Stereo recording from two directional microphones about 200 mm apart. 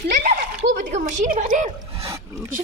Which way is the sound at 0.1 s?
40° right (ahead or behind).